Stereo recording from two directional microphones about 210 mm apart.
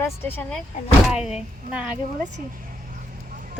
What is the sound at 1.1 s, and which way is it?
Speech, 5° right (ahead or behind).